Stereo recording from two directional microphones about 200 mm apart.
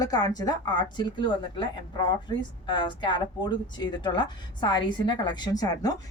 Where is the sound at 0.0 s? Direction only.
20° left (ahead or behind).